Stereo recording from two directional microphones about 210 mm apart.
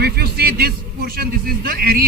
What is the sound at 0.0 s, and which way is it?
A man's voice, 50° right (ahead or behind).